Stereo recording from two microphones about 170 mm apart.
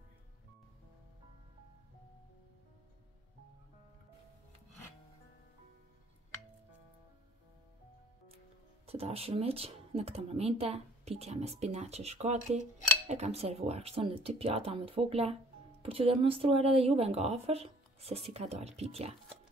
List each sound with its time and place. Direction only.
8.8 s speech: 35° right (ahead or behind)